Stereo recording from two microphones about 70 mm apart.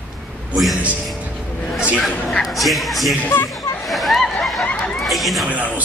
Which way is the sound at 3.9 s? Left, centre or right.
Centre.